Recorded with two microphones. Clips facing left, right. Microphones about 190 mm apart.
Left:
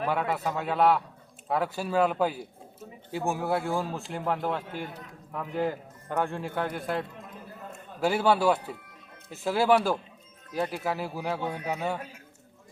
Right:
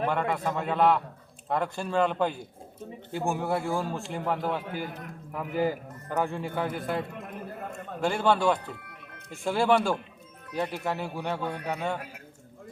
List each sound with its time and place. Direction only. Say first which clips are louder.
0.0 s a man's voice: right 1 dB; 5° left (ahead or behind)
7.1 s a sound: right 6 dB; 65° right (ahead or behind)
8.0 s a man's voice: left 1 dB; 5° left (ahead or behind)
8.8 s music: right 3 dB; 65° right (ahead or behind)
9.3 s a man's voice: left 1 dB; centre (ahead or behind)